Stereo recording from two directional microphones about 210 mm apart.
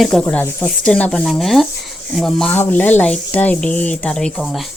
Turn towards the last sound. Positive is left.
turn(degrees=5)  # may be behind; listen again after turning